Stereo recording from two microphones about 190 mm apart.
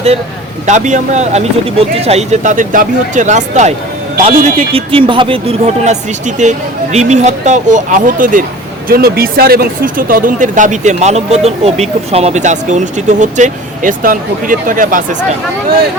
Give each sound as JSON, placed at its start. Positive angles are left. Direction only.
{"t": 0.7, "sound": "speech", "side_deg": -40}